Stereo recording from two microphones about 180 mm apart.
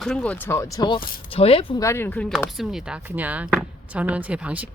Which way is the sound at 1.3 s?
30° left (ahead or behind).